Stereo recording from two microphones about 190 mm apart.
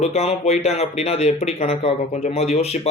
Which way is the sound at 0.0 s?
35° left (ahead or behind).